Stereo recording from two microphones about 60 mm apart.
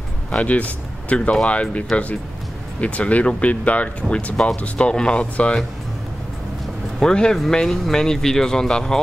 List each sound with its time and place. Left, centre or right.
0.3 s speech: left
7.0 s speech: centre